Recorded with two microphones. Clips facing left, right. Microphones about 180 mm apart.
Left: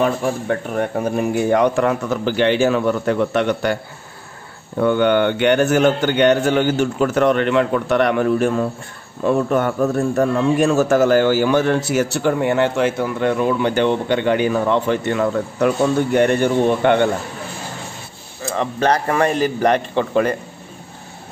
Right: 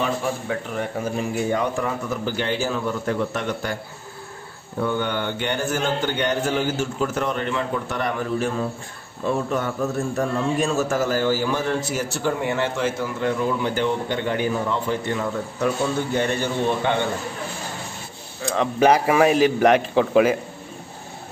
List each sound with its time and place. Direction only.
0.0 s a man's voice: 55° left (ahead or behind); by 3.7 s 75° left (ahead or behind)
4.7 s a man's voice: 70° left (ahead or behind)
18.4 s a sound: centre (ahead or behind)
18.8 s a man's voice: 10° right (ahead or behind)